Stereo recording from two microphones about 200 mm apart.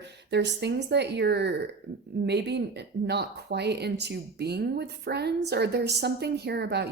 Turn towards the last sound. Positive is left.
turn(degrees=-55)  # may be behind; listen again after turning